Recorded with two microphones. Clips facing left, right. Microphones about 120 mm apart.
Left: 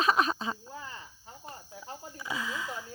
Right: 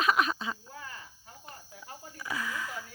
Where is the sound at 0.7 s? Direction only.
20° left (ahead or behind).